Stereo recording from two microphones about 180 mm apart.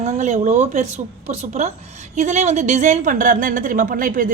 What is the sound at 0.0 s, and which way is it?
A woman's voice, 40° right (ahead or behind).